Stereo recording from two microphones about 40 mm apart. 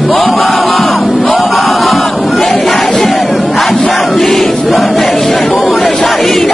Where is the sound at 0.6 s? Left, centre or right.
Centre.